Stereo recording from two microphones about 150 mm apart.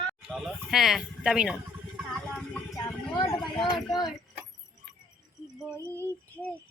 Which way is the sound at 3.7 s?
30° left (ahead or behind).